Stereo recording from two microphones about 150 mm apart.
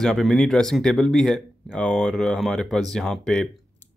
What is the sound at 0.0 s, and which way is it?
Speech, 5° left (ahead or behind).